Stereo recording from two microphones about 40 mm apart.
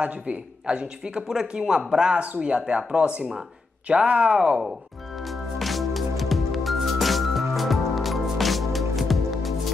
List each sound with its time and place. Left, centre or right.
0.0 s a man's voice: right
0.7 s speech: right
3.8 s speech: right
5.2 s music: centre